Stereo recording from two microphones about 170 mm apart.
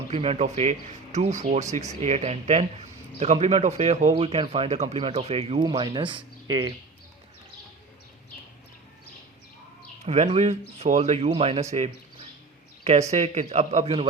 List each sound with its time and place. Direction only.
0.1 s speech: 35° right (ahead or behind)
10.2 s speech: 40° right (ahead or behind)